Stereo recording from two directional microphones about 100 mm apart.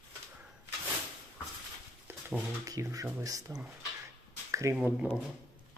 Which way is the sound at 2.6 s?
35° right (ahead or behind).